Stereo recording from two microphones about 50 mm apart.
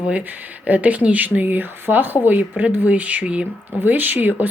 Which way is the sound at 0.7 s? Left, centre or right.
Right.